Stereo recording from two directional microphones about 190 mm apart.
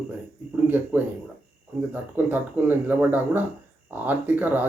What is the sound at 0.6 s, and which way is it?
A man's voice, 10° right (ahead or behind).